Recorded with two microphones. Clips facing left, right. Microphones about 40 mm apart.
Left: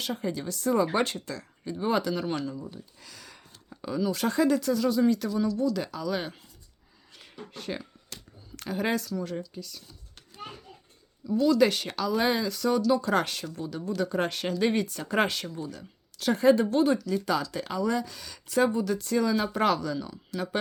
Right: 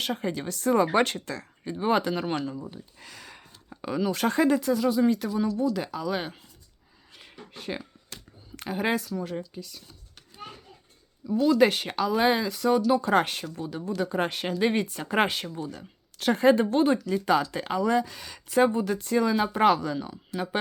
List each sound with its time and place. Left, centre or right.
0.0 s speech: right
1.6 s speech: right
3.0 s a sound: right
3.8 s speech: right
4.4 s speech: right
7.1 s a sound: centre
11.3 s speech: right
13.6 s speech: centre
15.7 s speech: right